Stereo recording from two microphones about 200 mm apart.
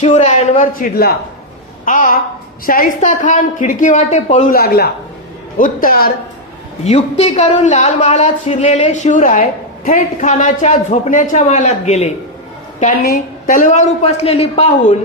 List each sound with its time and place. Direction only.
0.0 s a man's voice: 35° left (ahead or behind)
6.8 s a man's voice: 30° left (ahead or behind)
13.0 s a man's voice: 45° left (ahead or behind); by 14.9 s 30° left (ahead or behind)